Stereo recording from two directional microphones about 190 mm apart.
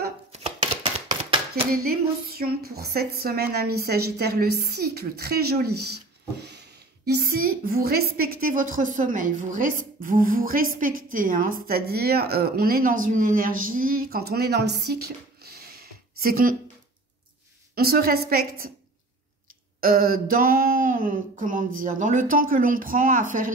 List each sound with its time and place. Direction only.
0.3 s chopping: 30° right (ahead or behind)
1.9 s a woman's voice: 55° right (ahead or behind)
17.7 s speech: 50° right (ahead or behind)
19.8 s speech: 50° right (ahead or behind)